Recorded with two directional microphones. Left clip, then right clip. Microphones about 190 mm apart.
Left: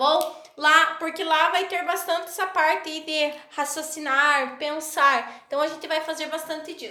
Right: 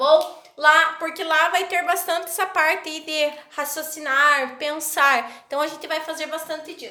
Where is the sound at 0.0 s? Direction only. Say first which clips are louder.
Right 4 dB; 15° left (ahead or behind).